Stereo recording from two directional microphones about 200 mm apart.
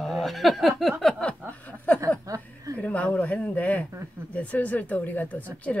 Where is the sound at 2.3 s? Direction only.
15° right (ahead or behind).